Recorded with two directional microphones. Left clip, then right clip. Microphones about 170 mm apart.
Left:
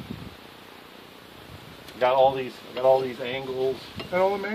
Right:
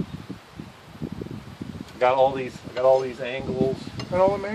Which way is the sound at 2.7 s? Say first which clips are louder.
Right 1 dB; 25° right (ahead or behind).